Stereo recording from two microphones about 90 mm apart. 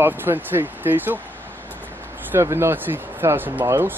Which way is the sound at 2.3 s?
30° right (ahead or behind).